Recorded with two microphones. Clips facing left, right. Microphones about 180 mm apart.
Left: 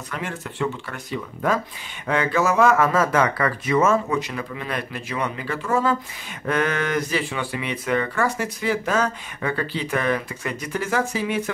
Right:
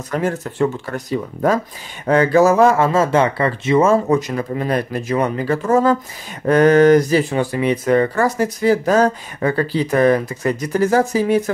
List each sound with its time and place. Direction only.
0.1 s speech: 40° right (ahead or behind)